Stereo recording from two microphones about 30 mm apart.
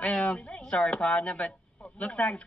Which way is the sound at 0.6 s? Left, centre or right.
Left.